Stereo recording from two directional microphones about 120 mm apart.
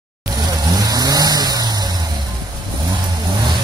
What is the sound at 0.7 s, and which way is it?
Vehicle, 30° right (ahead or behind).